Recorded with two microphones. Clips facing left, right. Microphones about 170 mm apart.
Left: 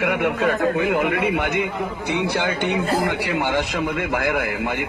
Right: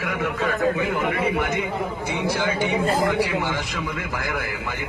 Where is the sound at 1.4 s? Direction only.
65° left (ahead or behind).